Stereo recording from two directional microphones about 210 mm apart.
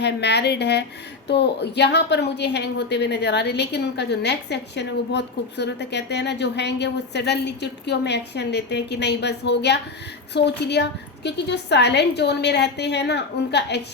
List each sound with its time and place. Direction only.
0.0 s a woman's voice: 55° left (ahead or behind)